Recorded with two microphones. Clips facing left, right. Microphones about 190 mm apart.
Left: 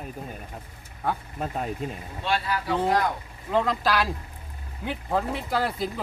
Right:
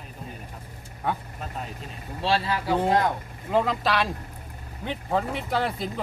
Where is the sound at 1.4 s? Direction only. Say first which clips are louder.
Left 6 dB; 50° left (ahead or behind).